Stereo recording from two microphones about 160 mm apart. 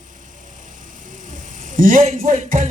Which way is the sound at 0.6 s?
55° right (ahead or behind).